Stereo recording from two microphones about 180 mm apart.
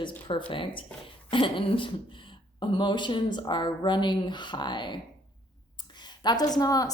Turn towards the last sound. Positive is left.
turn(degrees=20)  # may be behind; listen again after turning